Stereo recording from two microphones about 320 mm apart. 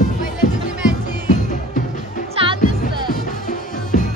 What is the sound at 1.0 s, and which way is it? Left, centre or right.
Music, left.